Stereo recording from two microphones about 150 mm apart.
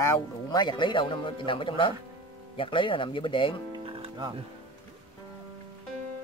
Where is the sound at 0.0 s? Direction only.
30° left (ahead or behind).